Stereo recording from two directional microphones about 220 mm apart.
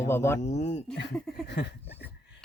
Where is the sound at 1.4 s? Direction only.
50° left (ahead or behind).